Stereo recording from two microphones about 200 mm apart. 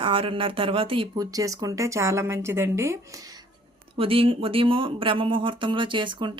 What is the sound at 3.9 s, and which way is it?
Speech, 25° right (ahead or behind).